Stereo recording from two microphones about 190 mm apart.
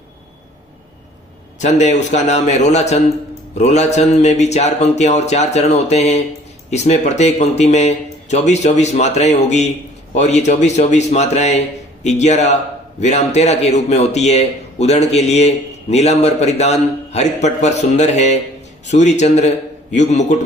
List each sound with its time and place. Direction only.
1.5 s a man's voice: 40° left (ahead or behind)